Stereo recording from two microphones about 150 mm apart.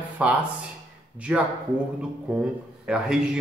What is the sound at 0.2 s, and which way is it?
Speech, 5° right (ahead or behind).